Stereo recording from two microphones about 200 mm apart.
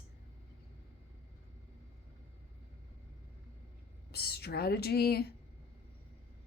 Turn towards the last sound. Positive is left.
turn(degrees=50)  # may be behind; listen again after turning